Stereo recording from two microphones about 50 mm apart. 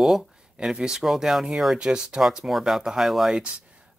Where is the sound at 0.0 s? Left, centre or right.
Centre.